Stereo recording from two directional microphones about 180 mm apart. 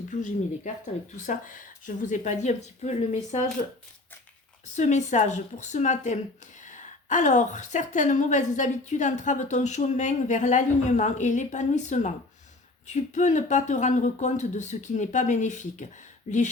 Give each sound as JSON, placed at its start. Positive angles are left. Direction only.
{"t": 0.1, "sound": "a woman's voice", "side_deg": 45}
{"t": 4.7, "sound": "a woman's voice", "side_deg": 40}